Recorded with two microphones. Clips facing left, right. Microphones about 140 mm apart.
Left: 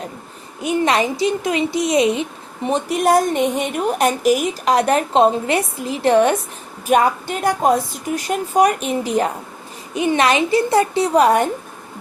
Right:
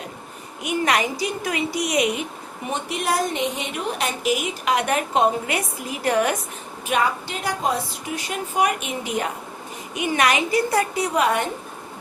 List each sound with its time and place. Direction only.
0.6 s a woman's voice: 30° left (ahead or behind)
2.6 s a woman's voice: 40° left (ahead or behind)
6.8 s a woman's voice: 50° left (ahead or behind)